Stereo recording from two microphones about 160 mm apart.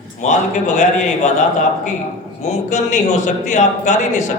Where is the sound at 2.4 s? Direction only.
45° left (ahead or behind).